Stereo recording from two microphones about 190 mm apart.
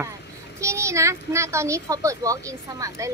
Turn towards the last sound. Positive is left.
turn(degrees=-15)  # may be behind; listen again after turning